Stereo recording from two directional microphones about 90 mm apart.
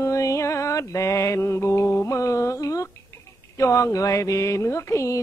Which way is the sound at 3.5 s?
35° left (ahead or behind).